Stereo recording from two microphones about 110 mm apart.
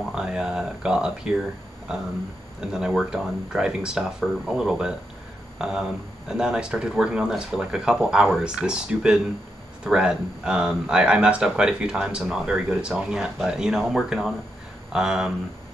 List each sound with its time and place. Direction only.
0.1 s speech: 5° right (ahead or behind)